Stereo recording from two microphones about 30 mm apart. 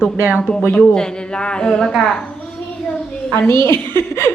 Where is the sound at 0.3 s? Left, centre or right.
Left.